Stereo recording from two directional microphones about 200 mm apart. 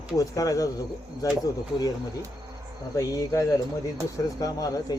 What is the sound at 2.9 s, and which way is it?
Speech, 15° left (ahead or behind).